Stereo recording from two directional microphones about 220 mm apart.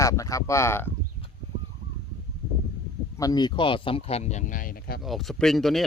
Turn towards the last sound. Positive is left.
turn(degrees=0)  # may be behind; listen again after turning